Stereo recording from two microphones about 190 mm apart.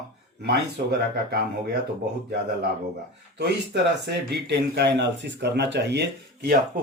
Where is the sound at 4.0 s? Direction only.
60° right (ahead or behind).